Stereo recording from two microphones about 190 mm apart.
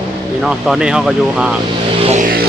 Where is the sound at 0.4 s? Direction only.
Centre (ahead or behind).